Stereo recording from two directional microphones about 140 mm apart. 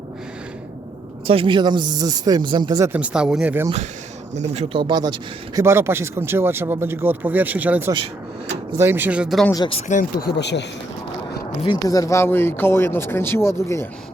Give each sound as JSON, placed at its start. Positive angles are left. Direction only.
{"t": 1.3, "sound": "speech", "side_deg": -40}
{"t": 2.8, "sound": "speech", "side_deg": -10}
{"t": 4.4, "sound": "speech", "side_deg": -50}
{"t": 4.8, "sound": "speech", "side_deg": -30}
{"t": 5.6, "sound": "speech", "side_deg": -20}
{"t": 9.9, "sound": "speech", "side_deg": 75}
{"t": 11.9, "sound": "speech", "side_deg": 25}